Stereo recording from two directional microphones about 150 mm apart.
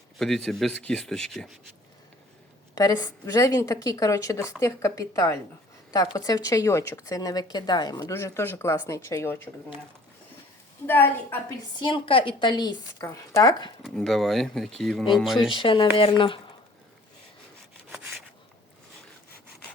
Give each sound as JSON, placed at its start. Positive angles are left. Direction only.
{"t": 0.2, "sound": "speech", "side_deg": 0}
{"t": 2.7, "sound": "speech", "side_deg": 25}
{"t": 10.8, "sound": "a woman's voice", "side_deg": 15}
{"t": 11.8, "sound": "speech", "side_deg": 35}
{"t": 13.8, "sound": "speech", "side_deg": 5}
{"t": 15.5, "sound": "speech", "side_deg": 35}